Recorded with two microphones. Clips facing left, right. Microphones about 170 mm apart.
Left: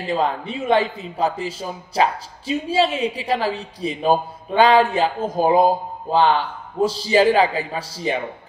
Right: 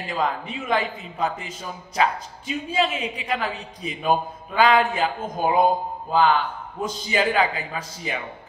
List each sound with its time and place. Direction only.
0.0 s speech: 30° left (ahead or behind)